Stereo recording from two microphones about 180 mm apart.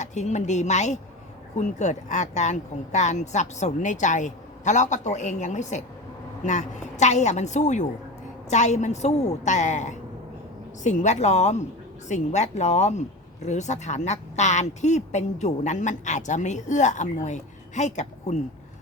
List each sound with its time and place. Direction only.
0.0 s speech: 40° left (ahead or behind)